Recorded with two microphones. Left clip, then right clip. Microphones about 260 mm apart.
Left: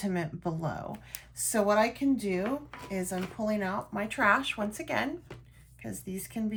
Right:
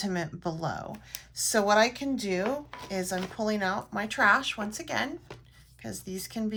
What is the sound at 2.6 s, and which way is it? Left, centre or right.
Speech, right.